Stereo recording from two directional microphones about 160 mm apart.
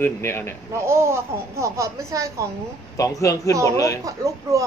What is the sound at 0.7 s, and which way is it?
Speech, 15° right (ahead or behind).